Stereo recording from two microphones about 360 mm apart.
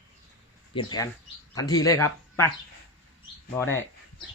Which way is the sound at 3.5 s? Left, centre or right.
Centre.